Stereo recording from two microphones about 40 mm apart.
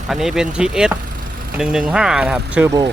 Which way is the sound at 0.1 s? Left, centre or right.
Centre.